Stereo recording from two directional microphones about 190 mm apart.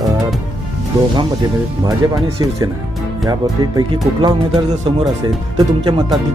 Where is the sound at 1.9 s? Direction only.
20° right (ahead or behind).